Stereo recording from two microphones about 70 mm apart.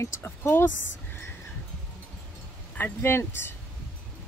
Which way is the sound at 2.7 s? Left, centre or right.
Left.